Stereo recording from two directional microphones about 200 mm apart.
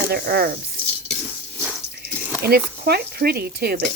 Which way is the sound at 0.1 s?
50° right (ahead or behind).